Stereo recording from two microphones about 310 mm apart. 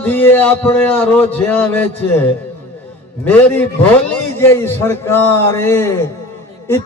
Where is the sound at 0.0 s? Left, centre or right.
Centre.